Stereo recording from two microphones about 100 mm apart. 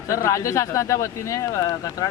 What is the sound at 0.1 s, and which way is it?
Speech, 30° left (ahead or behind).